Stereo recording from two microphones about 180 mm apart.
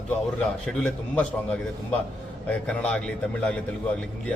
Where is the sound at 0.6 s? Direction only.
5° left (ahead or behind).